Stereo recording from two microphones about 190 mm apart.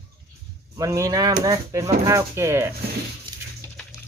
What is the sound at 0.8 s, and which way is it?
Speech, 15° right (ahead or behind).